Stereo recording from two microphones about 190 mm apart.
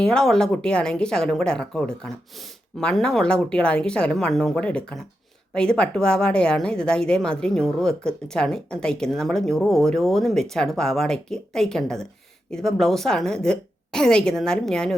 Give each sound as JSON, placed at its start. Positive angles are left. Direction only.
{"t": 0.0, "sound": "a woman's voice", "side_deg": 5}